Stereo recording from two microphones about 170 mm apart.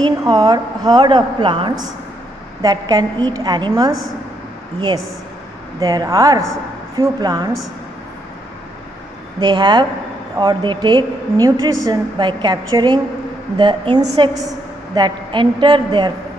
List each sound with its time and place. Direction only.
0.0 s a woman's voice: 25° right (ahead or behind)
5.8 s a woman's voice: 20° right (ahead or behind)
9.4 s a woman's voice: 25° right (ahead or behind)